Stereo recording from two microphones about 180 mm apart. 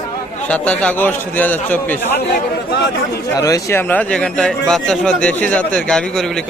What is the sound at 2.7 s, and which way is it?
Speech, 65° left (ahead or behind).